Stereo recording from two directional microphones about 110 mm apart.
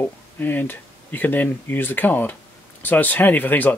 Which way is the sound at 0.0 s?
20° left (ahead or behind).